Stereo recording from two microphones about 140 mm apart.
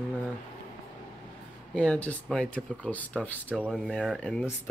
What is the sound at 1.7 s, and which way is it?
Speech, 10° left (ahead or behind).